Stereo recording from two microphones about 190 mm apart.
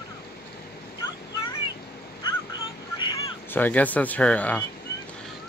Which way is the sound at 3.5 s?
10° left (ahead or behind).